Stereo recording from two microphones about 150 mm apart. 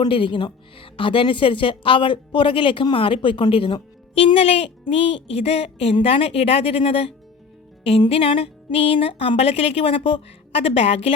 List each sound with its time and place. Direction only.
0.0 s a woman's voice: 35° left (ahead or behind)